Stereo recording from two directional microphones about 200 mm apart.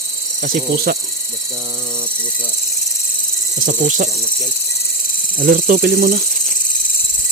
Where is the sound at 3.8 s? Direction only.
40° right (ahead or behind).